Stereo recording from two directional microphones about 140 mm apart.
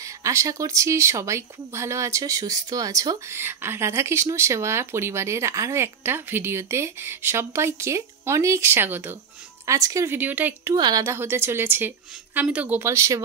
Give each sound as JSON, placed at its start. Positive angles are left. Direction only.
{"t": 0.0, "sound": "a woman's voice", "side_deg": -20}
{"t": 10.7, "sound": "a woman's voice", "side_deg": -25}